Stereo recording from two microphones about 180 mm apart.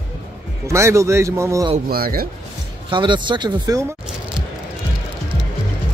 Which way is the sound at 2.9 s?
25° right (ahead or behind).